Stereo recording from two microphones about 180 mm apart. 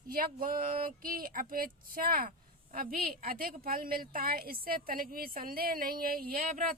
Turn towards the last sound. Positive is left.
turn(degrees=-50)  # may be behind; listen again after turning